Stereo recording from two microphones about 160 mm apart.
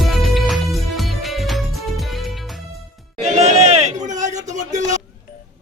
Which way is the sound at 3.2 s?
40° right (ahead or behind).